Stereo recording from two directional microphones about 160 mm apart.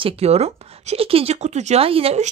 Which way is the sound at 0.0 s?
40° right (ahead or behind).